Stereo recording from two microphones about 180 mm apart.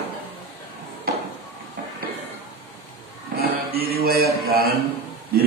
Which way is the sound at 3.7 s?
60° right (ahead or behind).